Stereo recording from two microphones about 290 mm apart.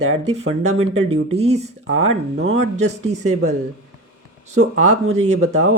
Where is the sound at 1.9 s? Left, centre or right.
Right.